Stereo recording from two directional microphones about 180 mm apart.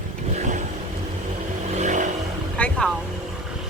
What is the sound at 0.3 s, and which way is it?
Vehicle, 40° right (ahead or behind).